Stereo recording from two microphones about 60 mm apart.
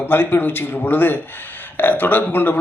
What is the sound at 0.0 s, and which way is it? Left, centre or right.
Speech, left.